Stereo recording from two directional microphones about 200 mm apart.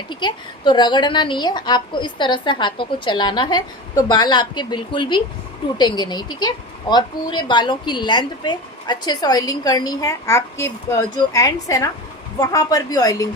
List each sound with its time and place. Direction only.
0.1 s a woman's voice: 25° left (ahead or behind)